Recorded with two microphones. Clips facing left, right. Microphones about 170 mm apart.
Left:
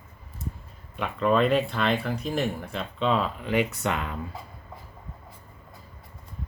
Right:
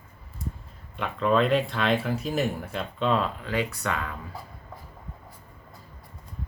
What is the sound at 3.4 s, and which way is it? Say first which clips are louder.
Speech: left 3 dB; 20° left (ahead or behind).